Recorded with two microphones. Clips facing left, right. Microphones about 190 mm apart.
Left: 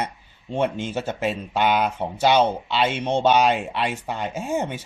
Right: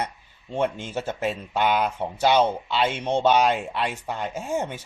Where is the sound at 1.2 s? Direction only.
75° left (ahead or behind).